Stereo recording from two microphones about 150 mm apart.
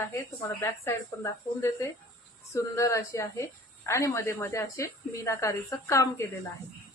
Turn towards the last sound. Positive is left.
turn(degrees=20)  # may be behind; listen again after turning